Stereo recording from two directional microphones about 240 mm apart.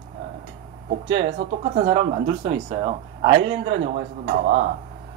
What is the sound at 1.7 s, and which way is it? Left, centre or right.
Speech, right.